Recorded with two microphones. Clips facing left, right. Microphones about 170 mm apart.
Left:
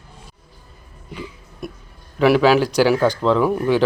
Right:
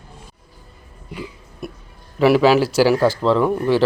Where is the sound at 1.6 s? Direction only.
5° right (ahead or behind).